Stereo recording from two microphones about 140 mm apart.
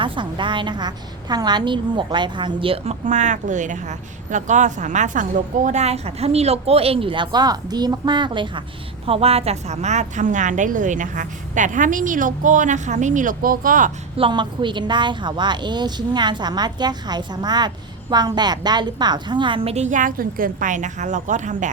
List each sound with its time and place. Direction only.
0.0 s a woman's voice: 35° right (ahead or behind); by 13.9 s 75° right (ahead or behind)
14.2 s a woman's voice: 35° right (ahead or behind); by 21.7 s 60° right (ahead or behind)